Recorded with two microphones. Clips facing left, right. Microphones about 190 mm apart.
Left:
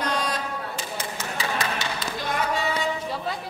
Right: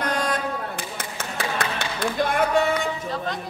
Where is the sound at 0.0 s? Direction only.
55° right (ahead or behind).